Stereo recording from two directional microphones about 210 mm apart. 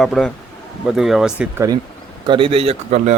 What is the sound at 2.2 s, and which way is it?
Speech, 25° right (ahead or behind).